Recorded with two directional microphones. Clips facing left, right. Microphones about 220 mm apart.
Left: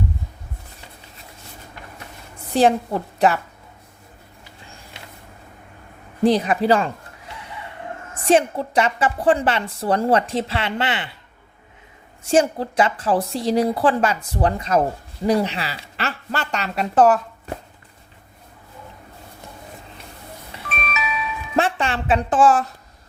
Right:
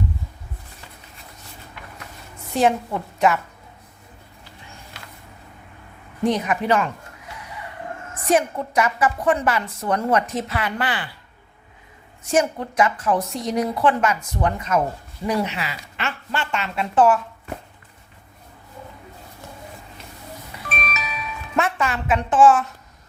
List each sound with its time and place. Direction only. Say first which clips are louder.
2.5 s a woman's voice: left 3 dB; 35° left (ahead or behind)
4.9 s a sound: left 3 dB; 25° left (ahead or behind)
6.2 s a woman's voice: left 4 dB; 30° left (ahead or behind)
8.2 s a woman's voice: left 3 dB; 30° left (ahead or behind)
12.2 s a woman's voice: left 3 dB; 30° left (ahead or behind)
20.9 s music: left 5 dB; 40° right (ahead or behind)
21.5 s a woman's voice: left 2 dB; 30° left (ahead or behind)